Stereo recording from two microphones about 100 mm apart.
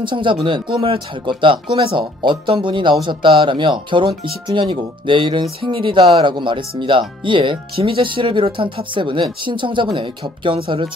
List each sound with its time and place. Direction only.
0.0 s speech: 55° right (ahead or behind)